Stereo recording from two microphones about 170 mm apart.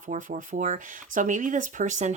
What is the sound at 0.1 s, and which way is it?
Speech, 50° right (ahead or behind).